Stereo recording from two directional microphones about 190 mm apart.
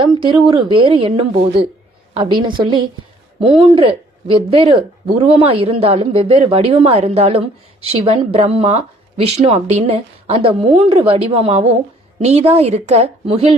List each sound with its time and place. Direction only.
0.0 s a woman's voice: 25° right (ahead or behind)